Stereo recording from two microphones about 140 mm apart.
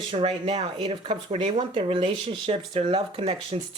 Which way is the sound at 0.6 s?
35° right (ahead or behind).